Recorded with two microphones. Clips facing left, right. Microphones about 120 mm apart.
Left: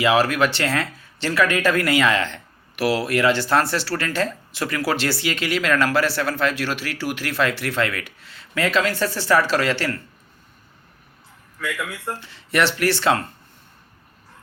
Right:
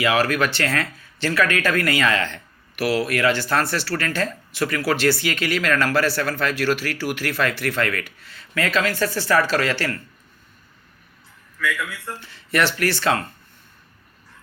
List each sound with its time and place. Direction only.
0.0 s a man's voice: 25° left (ahead or behind)
11.6 s a man's voice: 20° left (ahead or behind)